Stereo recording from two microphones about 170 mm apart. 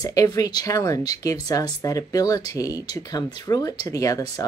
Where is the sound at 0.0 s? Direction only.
20° left (ahead or behind).